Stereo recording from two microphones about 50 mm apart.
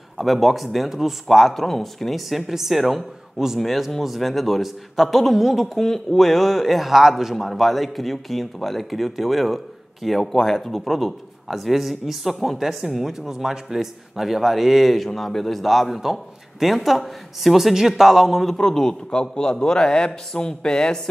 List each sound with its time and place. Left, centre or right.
0.2 s a man's voice: centre